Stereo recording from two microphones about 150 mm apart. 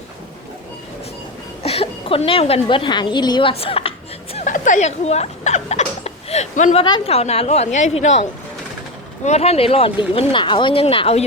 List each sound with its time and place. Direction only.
1.6 s a woman's voice: 40° left (ahead or behind)
3.5 s speech: 40° left (ahead or behind)
4.4 s hiccup: 55° left (ahead or behind)
6.7 s a woman's voice: 35° left (ahead or behind)